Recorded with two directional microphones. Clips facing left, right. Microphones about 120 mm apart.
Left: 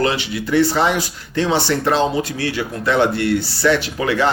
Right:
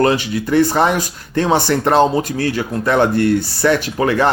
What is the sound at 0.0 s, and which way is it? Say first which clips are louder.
Speech: right 4 dB; 45° right (ahead or behind).